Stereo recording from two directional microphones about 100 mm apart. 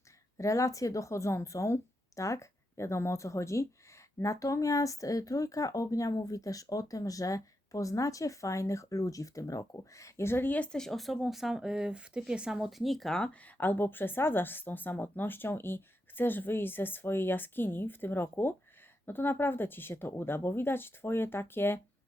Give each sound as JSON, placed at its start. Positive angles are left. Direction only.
{"t": 0.3, "sound": "speech", "side_deg": 30}
{"t": 13.6, "sound": "speech", "side_deg": 20}